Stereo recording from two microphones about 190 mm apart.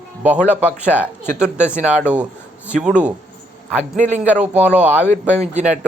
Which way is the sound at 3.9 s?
40° right (ahead or behind).